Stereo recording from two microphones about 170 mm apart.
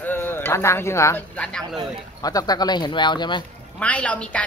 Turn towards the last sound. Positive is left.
turn(degrees=5)  # may be behind; listen again after turning